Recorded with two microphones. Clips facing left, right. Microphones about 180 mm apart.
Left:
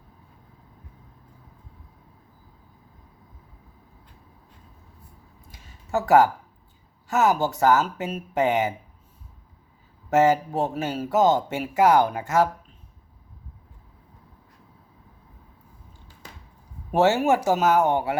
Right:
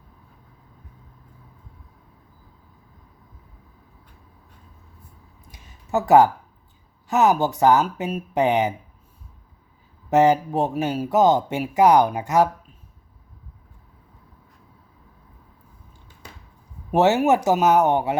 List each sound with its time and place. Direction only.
5.5 s a sound: 20° right (ahead or behind)
7.1 s speech: 20° right (ahead or behind)
10.1 s speech: 15° right (ahead or behind)
16.9 s speech: 15° right (ahead or behind)